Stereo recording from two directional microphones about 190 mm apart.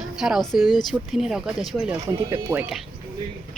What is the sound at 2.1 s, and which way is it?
Speech, 15° right (ahead or behind).